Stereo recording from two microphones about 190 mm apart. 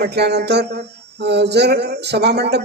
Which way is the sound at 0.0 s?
60° right (ahead or behind).